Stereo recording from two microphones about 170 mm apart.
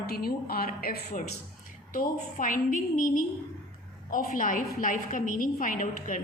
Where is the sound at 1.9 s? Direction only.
50° left (ahead or behind).